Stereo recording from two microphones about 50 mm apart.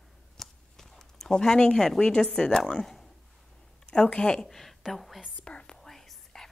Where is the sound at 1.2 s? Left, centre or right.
Centre.